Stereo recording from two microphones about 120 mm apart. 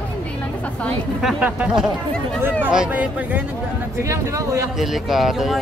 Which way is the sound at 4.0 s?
25° right (ahead or behind).